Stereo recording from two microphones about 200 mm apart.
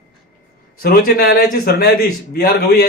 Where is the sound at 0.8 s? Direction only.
50° left (ahead or behind).